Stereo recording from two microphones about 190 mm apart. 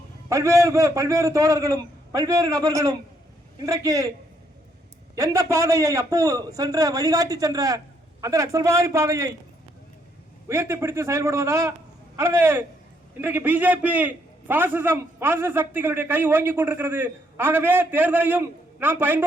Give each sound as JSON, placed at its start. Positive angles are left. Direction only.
{"t": 0.3, "sound": "a man's voice", "side_deg": -15}
{"t": 5.1, "sound": "a man's voice", "side_deg": -15}
{"t": 10.5, "sound": "a man's voice", "side_deg": -15}